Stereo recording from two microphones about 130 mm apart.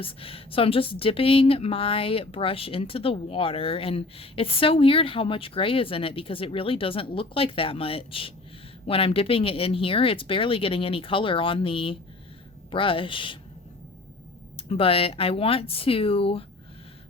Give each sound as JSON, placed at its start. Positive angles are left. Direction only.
{"t": 0.0, "sound": "speech", "side_deg": 45}
{"t": 14.7, "sound": "speech", "side_deg": 45}